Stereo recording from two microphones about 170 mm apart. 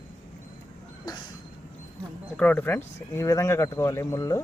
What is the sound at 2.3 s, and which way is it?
Speech, 10° left (ahead or behind).